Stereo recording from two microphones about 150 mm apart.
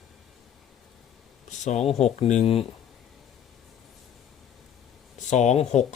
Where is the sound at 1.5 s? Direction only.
50° left (ahead or behind).